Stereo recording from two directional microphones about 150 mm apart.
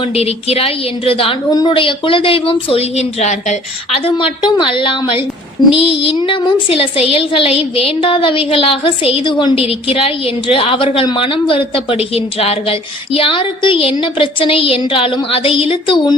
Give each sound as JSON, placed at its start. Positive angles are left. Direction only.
{"t": 0.2, "sound": "music", "side_deg": 45}